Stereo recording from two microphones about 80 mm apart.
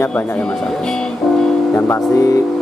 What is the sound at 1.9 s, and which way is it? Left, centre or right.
Speech, left.